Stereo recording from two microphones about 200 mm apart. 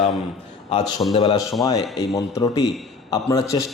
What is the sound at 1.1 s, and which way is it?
A man's voice, 20° left (ahead or behind).